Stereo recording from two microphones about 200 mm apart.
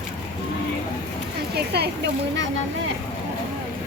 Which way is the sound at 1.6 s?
55° right (ahead or behind).